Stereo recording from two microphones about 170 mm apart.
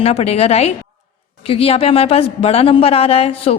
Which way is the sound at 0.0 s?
35° left (ahead or behind).